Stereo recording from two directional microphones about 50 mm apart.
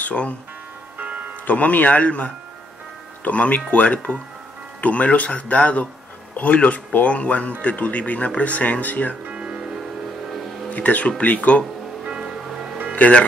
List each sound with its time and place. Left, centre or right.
0.0 s speech: left
0.9 s music: right
1.5 s speech: left
9.2 s music: right
10.7 s speech: left
12.1 s music: centre
12.9 s speech: left